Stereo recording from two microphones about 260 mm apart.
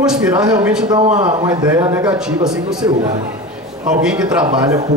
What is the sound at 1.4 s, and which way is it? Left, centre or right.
Speech, centre.